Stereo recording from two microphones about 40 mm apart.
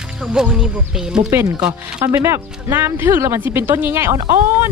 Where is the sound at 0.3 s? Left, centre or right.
Centre.